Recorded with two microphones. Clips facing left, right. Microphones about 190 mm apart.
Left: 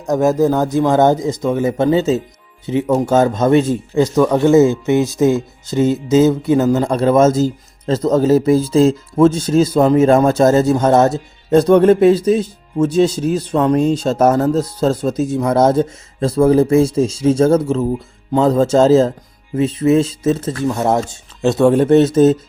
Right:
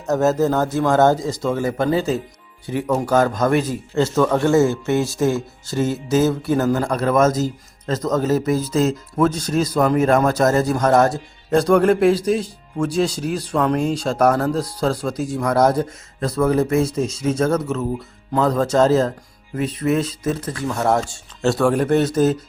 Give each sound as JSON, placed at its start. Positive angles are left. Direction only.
{"t": 0.0, "sound": "speech", "side_deg": 15}
{"t": 3.9, "sound": "speech", "side_deg": 15}